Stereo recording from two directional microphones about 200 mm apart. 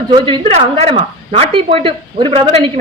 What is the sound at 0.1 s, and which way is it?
Speech, 25° right (ahead or behind).